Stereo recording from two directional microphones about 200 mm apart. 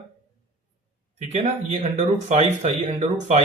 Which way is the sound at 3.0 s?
35° right (ahead or behind).